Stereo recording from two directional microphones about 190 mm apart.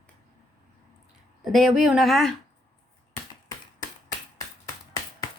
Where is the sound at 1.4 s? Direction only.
Centre (ahead or behind).